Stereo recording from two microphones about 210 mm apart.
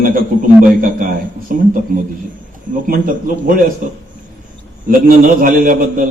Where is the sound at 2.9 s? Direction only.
40° right (ahead or behind).